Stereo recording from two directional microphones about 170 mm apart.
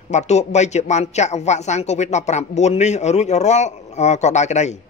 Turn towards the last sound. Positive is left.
turn(degrees=45)  # may be behind; listen again after turning